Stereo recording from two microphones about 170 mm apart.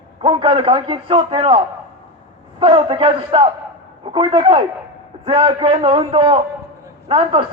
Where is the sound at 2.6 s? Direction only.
30° right (ahead or behind).